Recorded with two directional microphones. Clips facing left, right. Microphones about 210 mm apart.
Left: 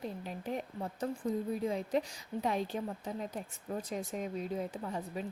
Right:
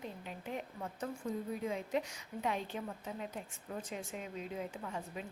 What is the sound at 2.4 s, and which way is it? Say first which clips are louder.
A woman's voice: left 4 dB; 35° left (ahead or behind).